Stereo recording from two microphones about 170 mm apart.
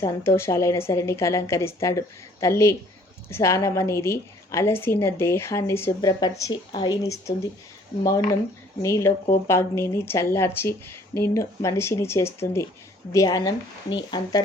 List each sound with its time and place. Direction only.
0.0 s speech: 15° left (ahead or behind)
8.8 s speech: 15° left (ahead or behind)